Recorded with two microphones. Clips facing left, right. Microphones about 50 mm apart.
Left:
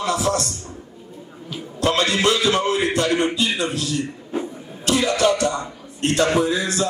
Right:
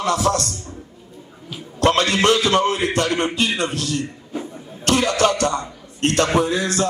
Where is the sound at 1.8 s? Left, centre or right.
Right.